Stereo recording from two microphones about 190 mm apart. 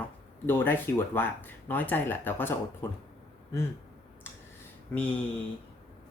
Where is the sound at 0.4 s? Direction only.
10° left (ahead or behind).